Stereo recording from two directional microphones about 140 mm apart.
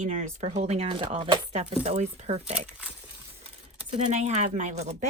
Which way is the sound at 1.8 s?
50° right (ahead or behind).